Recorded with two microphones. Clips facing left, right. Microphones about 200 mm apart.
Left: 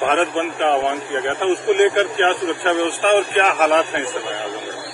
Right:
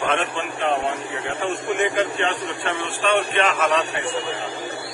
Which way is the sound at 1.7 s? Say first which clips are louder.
Left 7 dB; 55° left (ahead or behind).